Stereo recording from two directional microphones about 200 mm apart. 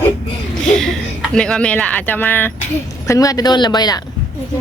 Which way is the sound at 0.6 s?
5° left (ahead or behind).